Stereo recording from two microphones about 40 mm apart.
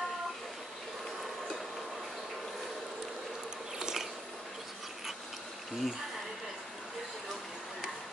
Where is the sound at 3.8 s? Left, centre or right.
Centre.